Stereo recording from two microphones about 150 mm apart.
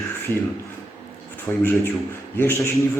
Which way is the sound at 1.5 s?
10° left (ahead or behind).